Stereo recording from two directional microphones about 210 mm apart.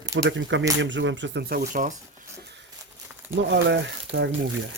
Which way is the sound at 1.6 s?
35° right (ahead or behind).